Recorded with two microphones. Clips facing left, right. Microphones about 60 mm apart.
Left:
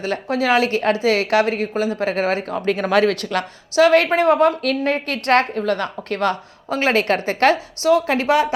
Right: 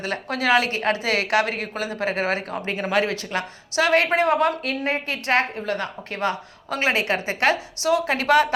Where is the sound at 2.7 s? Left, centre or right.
Left.